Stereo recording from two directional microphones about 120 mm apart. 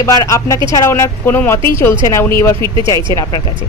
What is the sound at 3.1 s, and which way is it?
Speech, 35° left (ahead or behind).